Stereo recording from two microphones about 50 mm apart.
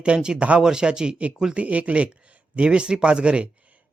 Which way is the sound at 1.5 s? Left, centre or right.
Right.